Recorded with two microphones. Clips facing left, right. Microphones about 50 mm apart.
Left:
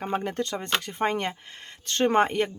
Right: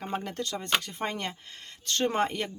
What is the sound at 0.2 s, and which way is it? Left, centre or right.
Speech, left.